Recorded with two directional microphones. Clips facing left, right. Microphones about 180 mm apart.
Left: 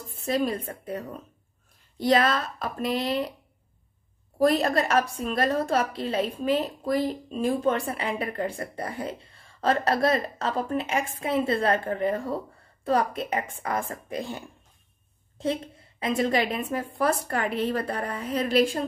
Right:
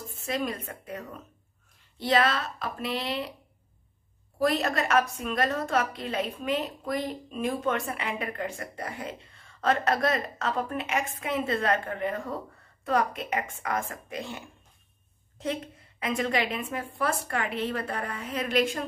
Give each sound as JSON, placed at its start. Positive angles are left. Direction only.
{"t": 0.1, "sound": "a woman's voice", "side_deg": 35}
{"t": 4.4, "sound": "a woman's voice", "side_deg": 40}